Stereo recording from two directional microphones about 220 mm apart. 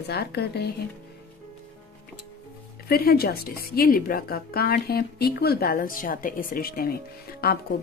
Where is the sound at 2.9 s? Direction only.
45° left (ahead or behind).